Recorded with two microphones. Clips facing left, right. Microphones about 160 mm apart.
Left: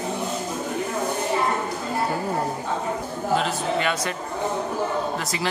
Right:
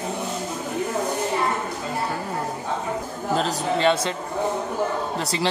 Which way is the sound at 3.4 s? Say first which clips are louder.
Right 5 dB; 35° right (ahead or behind).